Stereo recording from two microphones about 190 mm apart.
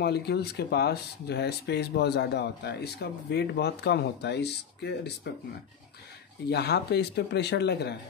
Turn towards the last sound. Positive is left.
turn(degrees=60)  # may be behind; listen again after turning